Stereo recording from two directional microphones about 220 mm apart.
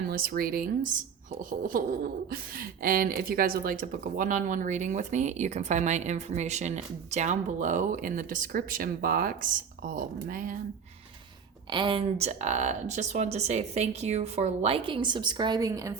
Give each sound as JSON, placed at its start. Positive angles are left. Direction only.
{"t": 0.1, "sound": "speech", "side_deg": -45}
{"t": 11.7, "sound": "speech", "side_deg": -20}